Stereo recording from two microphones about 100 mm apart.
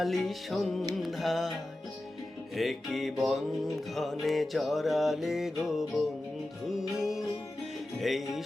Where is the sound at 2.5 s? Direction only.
Centre (ahead or behind).